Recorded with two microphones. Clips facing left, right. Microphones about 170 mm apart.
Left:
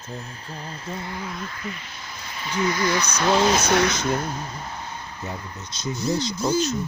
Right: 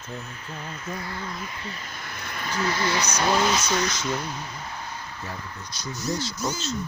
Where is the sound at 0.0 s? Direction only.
35° left (ahead or behind).